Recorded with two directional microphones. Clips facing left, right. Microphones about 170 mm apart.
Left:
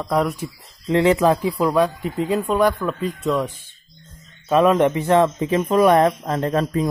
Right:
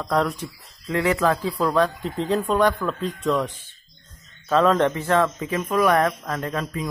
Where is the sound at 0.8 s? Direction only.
25° left (ahead or behind).